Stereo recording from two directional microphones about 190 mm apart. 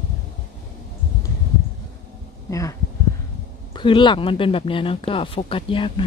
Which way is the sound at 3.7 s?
25° left (ahead or behind).